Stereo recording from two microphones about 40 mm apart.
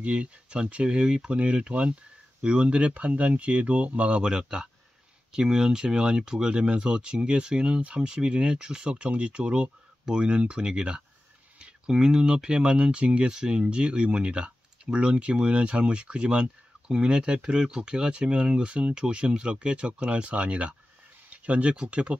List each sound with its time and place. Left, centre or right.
0.0 s speech: right
4.2 s speech: centre
13.3 s speech: centre